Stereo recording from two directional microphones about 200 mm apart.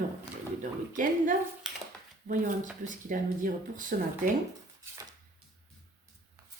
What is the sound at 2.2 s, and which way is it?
A woman's voice, 40° right (ahead or behind).